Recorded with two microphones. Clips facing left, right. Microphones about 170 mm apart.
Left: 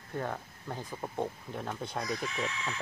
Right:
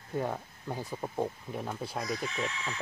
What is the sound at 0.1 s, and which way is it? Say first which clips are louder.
Speech: right 3 dB; 10° right (ahead or behind).